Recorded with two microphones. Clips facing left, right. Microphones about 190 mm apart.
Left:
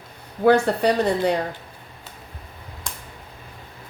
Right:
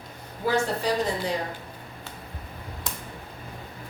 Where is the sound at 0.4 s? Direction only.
65° left (ahead or behind).